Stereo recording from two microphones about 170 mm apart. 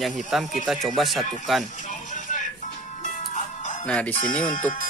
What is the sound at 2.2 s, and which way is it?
Music, 50° left (ahead or behind).